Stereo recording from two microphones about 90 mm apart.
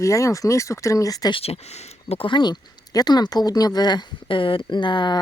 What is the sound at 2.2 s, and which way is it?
Speech, 60° left (ahead or behind).